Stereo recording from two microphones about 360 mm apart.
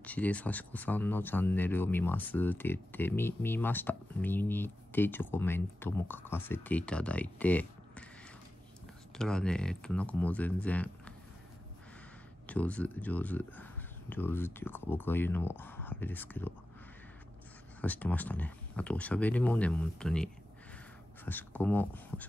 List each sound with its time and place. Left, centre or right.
0.0 s speech: centre
9.1 s speech: centre
12.4 s speech: centre
17.8 s speech: centre
21.3 s speech: centre